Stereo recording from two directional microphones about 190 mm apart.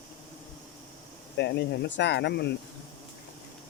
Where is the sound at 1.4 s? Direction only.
65° left (ahead or behind).